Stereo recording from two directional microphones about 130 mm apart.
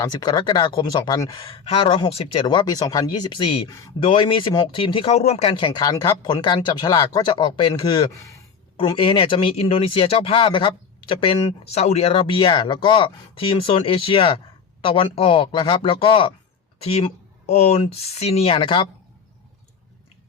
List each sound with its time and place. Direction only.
0.0 s speech: 30° left (ahead or behind)
1.5 s speech: 45° left (ahead or behind); by 8.3 s 30° left (ahead or behind)
8.8 s speech: 45° left (ahead or behind)